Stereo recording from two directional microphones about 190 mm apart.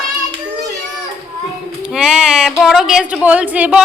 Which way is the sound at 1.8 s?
5° right (ahead or behind).